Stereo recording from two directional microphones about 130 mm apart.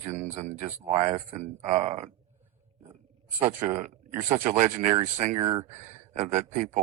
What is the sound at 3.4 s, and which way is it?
Speech, 55° right (ahead or behind).